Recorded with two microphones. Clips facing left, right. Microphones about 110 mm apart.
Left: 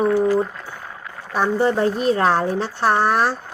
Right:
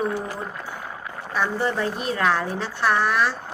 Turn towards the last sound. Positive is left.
turn(degrees=40)  # may be behind; listen again after turning